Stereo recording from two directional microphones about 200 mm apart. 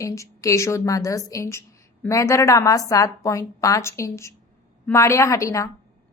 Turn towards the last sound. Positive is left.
turn(degrees=15)  # may be behind; listen again after turning